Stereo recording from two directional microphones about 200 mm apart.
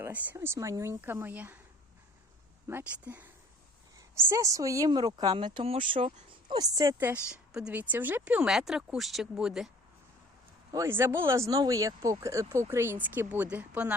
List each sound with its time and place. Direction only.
0.0 s speech: 10° right (ahead or behind)
2.6 s speech: 10° right (ahead or behind); by 6.2 s 30° right (ahead or behind)
6.5 s a woman's voice: 20° right (ahead or behind); by 9.7 s centre (ahead or behind)
10.7 s speech: 15° right (ahead or behind)